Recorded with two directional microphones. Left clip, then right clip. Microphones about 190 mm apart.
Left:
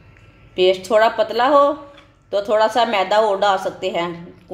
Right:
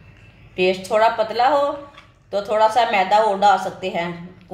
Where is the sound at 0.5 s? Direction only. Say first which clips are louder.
Left 3 dB; 40° left (ahead or behind).